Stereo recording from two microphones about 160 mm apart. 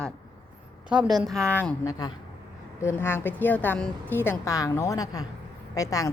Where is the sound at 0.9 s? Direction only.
5° right (ahead or behind).